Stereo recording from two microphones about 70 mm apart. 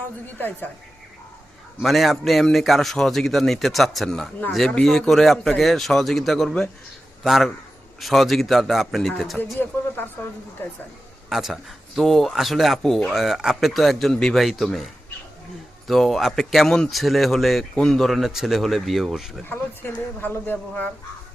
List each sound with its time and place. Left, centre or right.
0.3 s speech: left
1.8 s a man's voice: centre
9.6 s speech: left
11.3 s a man's voice: centre
15.9 s a man's voice: centre
19.5 s speech: left